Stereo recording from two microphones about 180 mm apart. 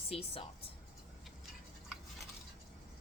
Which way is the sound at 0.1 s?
35° left (ahead or behind).